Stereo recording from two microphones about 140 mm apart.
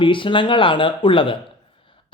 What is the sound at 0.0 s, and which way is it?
Speech, 35° left (ahead or behind).